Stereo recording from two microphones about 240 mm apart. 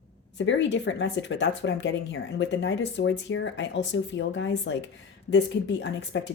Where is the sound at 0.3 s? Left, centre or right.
Left.